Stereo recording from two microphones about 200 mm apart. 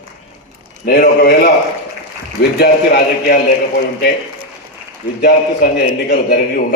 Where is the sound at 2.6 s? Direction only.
55° left (ahead or behind).